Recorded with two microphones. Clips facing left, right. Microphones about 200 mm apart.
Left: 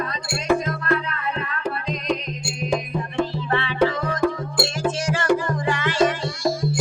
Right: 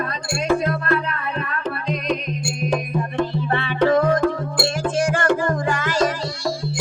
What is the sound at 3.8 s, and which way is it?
Music, 55° right (ahead or behind).